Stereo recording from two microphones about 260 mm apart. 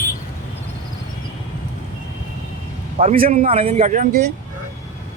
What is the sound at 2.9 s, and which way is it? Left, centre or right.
Speech, right.